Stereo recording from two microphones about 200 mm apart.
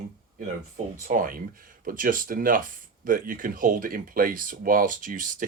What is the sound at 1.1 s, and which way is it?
Speech, 45° right (ahead or behind).